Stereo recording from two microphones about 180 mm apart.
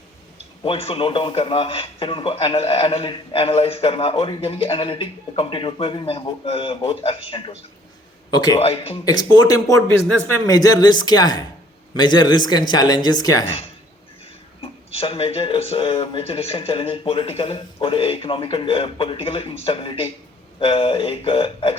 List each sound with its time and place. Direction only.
0.6 s a man's voice: 30° left (ahead or behind)
8.5 s a man's voice: 35° left (ahead or behind)
9.0 s speech: 20° left (ahead or behind)
14.6 s a man's voice: 30° left (ahead or behind)